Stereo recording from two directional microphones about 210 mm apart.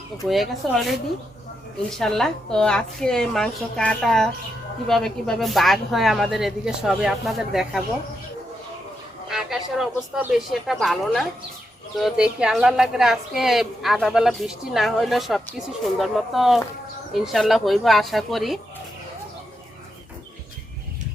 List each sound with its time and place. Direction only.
0.3 s a woman's voice: centre (ahead or behind)
9.3 s a woman's voice: centre (ahead or behind)